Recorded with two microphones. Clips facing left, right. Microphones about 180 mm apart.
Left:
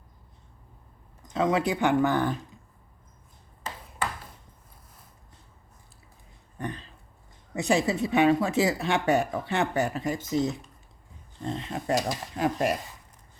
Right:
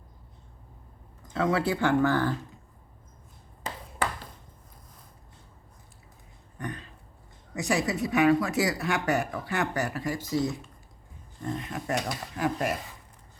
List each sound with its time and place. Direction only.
1.3 s speech: 20° left (ahead or behind)
6.6 s a sound: 30° left (ahead or behind)
7.5 s speech: 30° left (ahead or behind)